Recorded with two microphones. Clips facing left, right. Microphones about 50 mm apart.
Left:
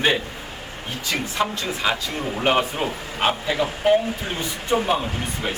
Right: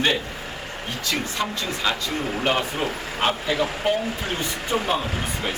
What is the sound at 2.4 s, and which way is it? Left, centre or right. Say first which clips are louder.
Speech: left 4 dB; centre.